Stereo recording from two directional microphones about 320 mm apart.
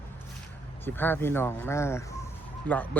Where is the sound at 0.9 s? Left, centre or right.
Centre.